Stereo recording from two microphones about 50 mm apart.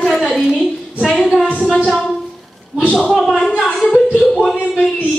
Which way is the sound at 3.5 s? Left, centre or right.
Centre.